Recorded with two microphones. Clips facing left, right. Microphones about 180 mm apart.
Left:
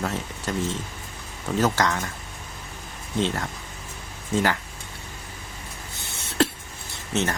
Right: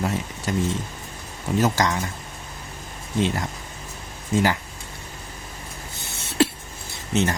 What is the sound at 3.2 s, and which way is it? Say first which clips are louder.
Speech: right 2 dB; 10° right (ahead or behind).